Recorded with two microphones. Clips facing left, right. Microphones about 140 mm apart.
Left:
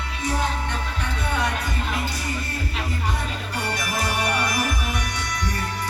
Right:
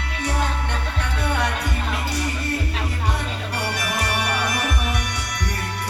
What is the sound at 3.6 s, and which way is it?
Music, 75° right (ahead or behind).